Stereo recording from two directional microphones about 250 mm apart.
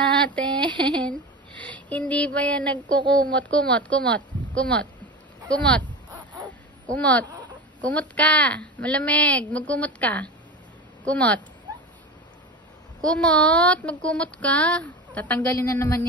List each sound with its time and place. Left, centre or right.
0.7 s speech: centre
1.6 s a sound: centre
3.1 s speech: centre
13.0 s speech: centre